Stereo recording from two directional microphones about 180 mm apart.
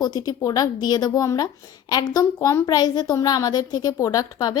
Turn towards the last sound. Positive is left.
turn(degrees=20)  # may be behind; listen again after turning